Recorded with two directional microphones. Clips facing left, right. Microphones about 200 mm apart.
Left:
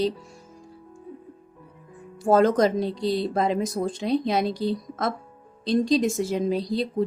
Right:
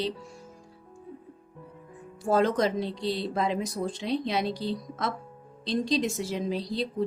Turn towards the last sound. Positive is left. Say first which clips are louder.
# left 6 dB
turn(degrees=50)  # may be behind; listen again after turning